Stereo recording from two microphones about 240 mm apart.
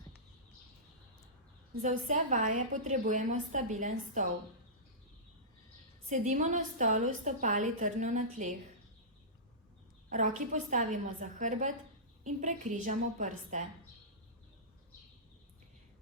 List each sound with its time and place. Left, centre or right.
2.0 s a woman's voice: right
6.1 s a woman's voice: right
10.1 s a woman's voice: right